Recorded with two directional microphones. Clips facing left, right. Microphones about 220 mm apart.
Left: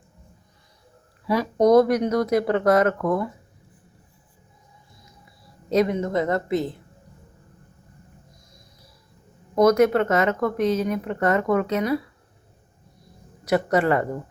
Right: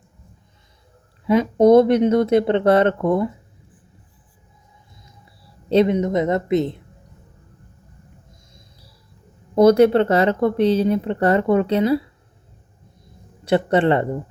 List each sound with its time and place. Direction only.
1.3 s speech: 25° right (ahead or behind)
5.6 s speech: 25° right (ahead or behind)
9.6 s speech: 30° right (ahead or behind)
13.4 s speech: 30° right (ahead or behind)